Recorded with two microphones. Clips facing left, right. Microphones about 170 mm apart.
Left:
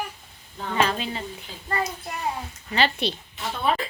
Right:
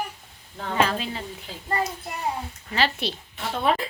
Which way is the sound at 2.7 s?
Centre (ahead or behind).